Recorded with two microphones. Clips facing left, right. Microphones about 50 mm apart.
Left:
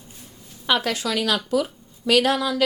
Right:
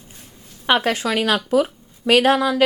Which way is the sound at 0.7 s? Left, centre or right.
Right.